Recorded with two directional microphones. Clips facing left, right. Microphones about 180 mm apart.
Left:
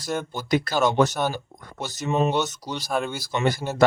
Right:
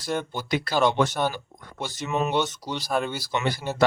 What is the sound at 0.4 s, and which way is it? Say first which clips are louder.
Speech: left 2 dB; 45° left (ahead or behind).